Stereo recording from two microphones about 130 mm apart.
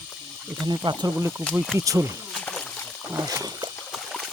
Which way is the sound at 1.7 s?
25° right (ahead or behind).